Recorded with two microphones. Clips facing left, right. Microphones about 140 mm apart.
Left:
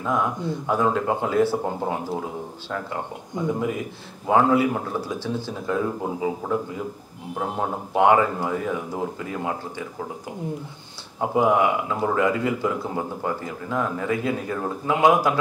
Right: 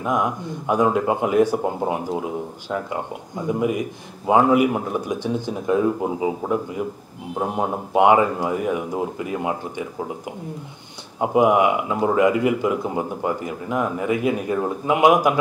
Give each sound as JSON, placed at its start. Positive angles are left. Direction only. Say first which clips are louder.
{"t": 0.0, "sound": "speech", "louder": "right 2 dB", "side_deg": -15}
{"t": 4.3, "sound": "speech", "louder": "right 3 dB", "side_deg": -15}
{"t": 11.1, "sound": "speech", "louder": "right 3 dB", "side_deg": -15}